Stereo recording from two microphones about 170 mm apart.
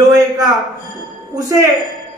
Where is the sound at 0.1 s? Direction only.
20° right (ahead or behind).